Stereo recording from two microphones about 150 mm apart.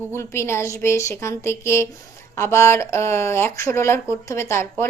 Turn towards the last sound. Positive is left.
turn(degrees=15)  # may be behind; listen again after turning